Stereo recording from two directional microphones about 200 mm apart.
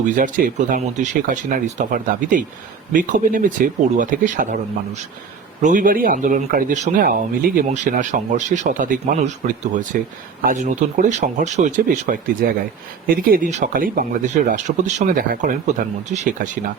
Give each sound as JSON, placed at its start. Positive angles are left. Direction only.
{"t": 0.2, "sound": "speech", "side_deg": -40}
{"t": 5.6, "sound": "speech", "side_deg": -45}